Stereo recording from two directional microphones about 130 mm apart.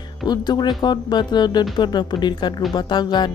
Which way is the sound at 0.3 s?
35° left (ahead or behind).